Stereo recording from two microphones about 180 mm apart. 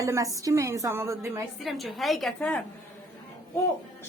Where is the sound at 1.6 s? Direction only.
Centre (ahead or behind).